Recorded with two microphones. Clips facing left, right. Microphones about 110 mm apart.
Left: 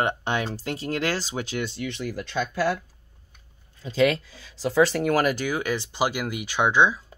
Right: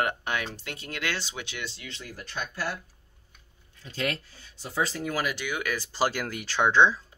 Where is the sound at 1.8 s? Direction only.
65° left (ahead or behind); by 2.8 s 90° left.